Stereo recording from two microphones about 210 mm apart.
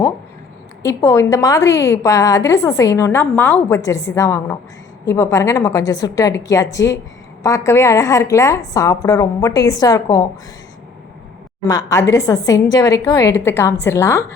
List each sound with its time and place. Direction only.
0.8 s a woman's voice: 15° left (ahead or behind)
11.6 s a woman's voice: 15° left (ahead or behind)